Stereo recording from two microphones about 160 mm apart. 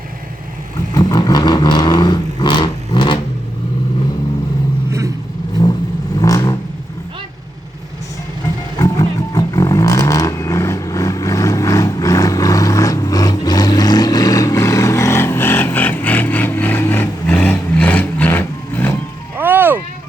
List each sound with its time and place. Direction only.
0.9 s vehicle: 25° left (ahead or behind)
4.9 s vehicle: 20° right (ahead or behind)
6.1 s vehicle: 20° left (ahead or behind)
8.8 s vehicle: 20° left (ahead or behind)
19.4 s music: 10° right (ahead or behind)